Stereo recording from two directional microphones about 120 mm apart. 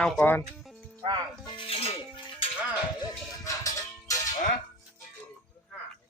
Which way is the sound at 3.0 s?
30° left (ahead or behind).